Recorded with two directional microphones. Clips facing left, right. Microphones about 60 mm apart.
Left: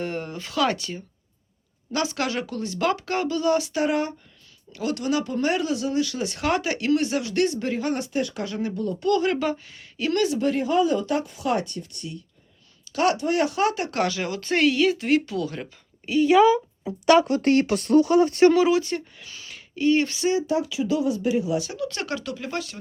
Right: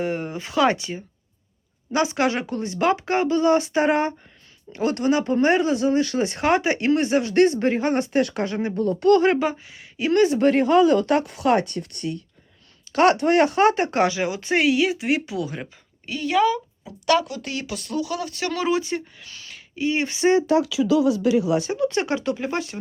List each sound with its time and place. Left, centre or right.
0.0 s speech: centre; by 8.0 s right
8.1 s speech: right
8.4 s speech: right
9.4 s speech: centre
10.3 s speech: right
14.0 s speech: centre
16.0 s speech: centre
16.9 s speech: left
17.2 s speech: left
18.7 s speech: centre
19.2 s a sound: centre
19.7 s speech: centre
20.5 s speech: right
21.6 s speech: right